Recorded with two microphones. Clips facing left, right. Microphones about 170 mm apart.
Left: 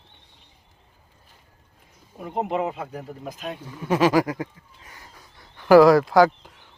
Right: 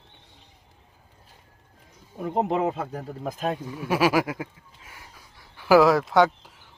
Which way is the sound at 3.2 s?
50° right (ahead or behind).